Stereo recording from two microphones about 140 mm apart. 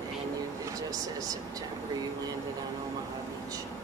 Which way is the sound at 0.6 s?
25° right (ahead or behind).